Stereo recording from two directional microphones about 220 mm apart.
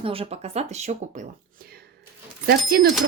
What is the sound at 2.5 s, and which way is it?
Speech, 45° right (ahead or behind).